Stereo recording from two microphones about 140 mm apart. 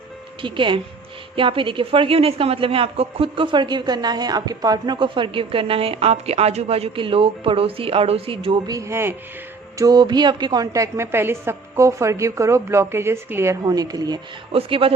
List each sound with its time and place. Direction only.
0.4 s a woman's voice: 35° right (ahead or behind)
8.7 s a woman's voice: 20° right (ahead or behind)
14.5 s a woman's voice: 40° right (ahead or behind)